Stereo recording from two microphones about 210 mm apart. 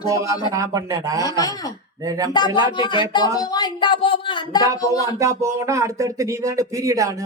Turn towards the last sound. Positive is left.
turn(degrees=-15)  # may be behind; listen again after turning